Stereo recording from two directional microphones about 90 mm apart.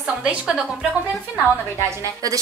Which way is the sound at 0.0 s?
10° right (ahead or behind).